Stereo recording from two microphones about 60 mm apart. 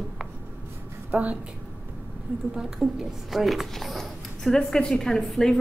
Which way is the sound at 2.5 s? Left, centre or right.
Centre.